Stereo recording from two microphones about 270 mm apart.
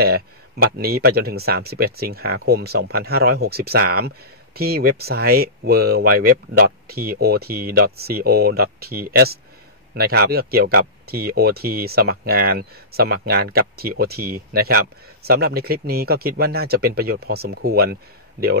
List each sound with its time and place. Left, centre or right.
0.0 s speech: right